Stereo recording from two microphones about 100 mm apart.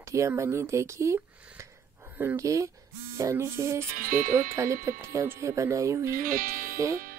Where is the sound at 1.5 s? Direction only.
30° right (ahead or behind).